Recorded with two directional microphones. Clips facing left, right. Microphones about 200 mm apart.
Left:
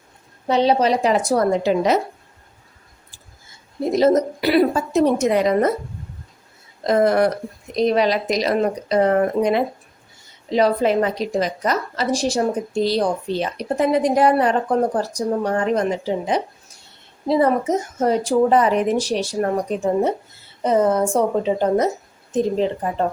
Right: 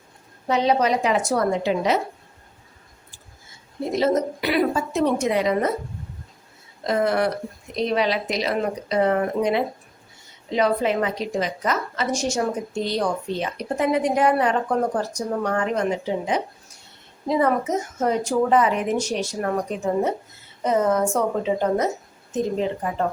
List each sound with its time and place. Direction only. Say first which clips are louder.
0.4 s a woman's voice: left 3 dB; 30° left (ahead or behind)
3.9 s a woman's voice: left 5 dB; 40° left (ahead or behind)
6.8 s a woman's voice: left 5 dB; 45° left (ahead or behind)